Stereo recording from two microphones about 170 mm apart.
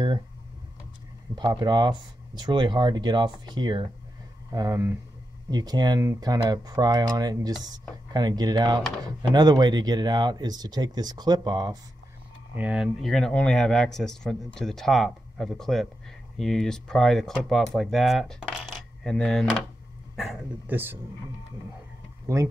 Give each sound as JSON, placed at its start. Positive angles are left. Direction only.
{"t": 1.3, "sound": "speech", "side_deg": -25}
{"t": 12.5, "sound": "speech", "side_deg": -5}
{"t": 22.3, "sound": "speech", "side_deg": -15}